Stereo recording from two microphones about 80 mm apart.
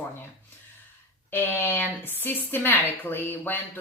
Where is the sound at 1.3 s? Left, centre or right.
Left.